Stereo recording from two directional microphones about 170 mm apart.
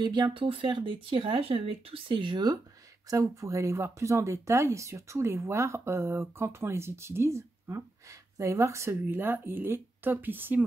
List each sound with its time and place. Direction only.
0.0 s speech: 25° right (ahead or behind); by 10.6 s 10° right (ahead or behind)